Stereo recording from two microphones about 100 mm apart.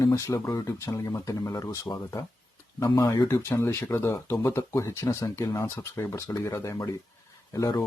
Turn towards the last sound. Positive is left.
turn(degrees=35)  # may be behind; listen again after turning